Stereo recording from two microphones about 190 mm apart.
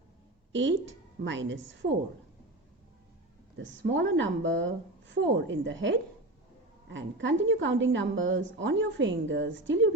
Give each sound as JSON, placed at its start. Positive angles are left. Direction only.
{"t": 0.5, "sound": "a woman's voice", "side_deg": -75}
{"t": 3.6, "sound": "a woman's voice", "side_deg": -75}